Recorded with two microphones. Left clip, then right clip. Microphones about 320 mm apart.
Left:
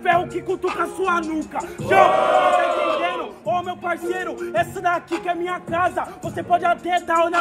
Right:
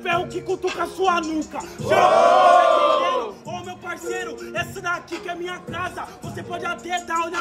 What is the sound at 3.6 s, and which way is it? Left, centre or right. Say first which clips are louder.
Speech: left 8 dB; centre.